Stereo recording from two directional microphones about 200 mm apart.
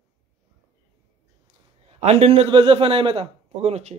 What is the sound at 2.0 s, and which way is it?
A man's voice, 35° right (ahead or behind).